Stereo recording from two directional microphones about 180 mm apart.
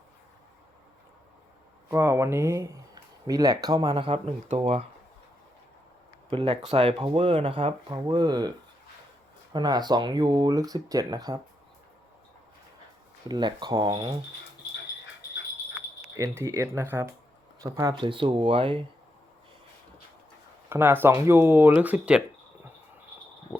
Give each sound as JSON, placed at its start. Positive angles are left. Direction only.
{"t": 1.9, "sound": "speech", "side_deg": -15}
{"t": 4.1, "sound": "speech", "side_deg": -35}
{"t": 6.3, "sound": "speech", "side_deg": -30}
{"t": 13.2, "sound": "speech", "side_deg": -25}
{"t": 16.1, "sound": "speech", "side_deg": -15}
{"t": 20.7, "sound": "speech", "side_deg": -10}